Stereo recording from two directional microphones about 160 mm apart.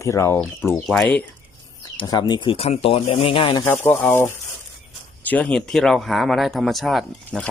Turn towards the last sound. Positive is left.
turn(degrees=0)  # may be behind; listen again after turning